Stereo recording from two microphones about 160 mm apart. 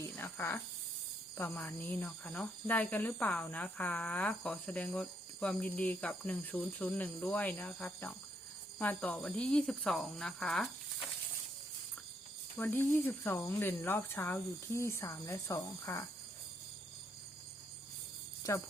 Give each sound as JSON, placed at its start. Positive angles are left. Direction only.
{"t": 0.0, "sound": "speech", "side_deg": 15}
{"t": 1.4, "sound": "cricket", "side_deg": 10}
{"t": 8.8, "sound": "speech", "side_deg": 10}
{"t": 12.5, "sound": "cricket", "side_deg": 10}
{"t": 18.5, "sound": "speech", "side_deg": 20}